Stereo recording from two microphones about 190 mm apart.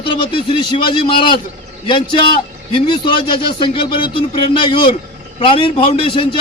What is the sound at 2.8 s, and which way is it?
A man's voice, 25° left (ahead or behind).